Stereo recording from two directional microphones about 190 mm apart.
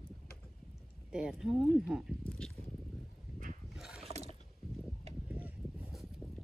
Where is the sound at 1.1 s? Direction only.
5° right (ahead or behind).